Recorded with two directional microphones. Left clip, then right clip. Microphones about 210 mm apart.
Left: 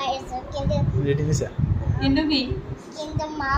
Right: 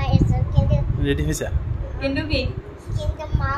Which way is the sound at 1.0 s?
35° right (ahead or behind).